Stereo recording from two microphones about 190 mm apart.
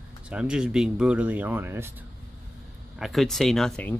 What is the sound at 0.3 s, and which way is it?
Speech, 5° right (ahead or behind).